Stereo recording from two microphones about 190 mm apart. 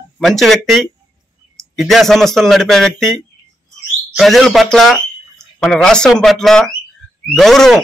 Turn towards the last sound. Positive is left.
turn(degrees=0)  # may be behind; listen again after turning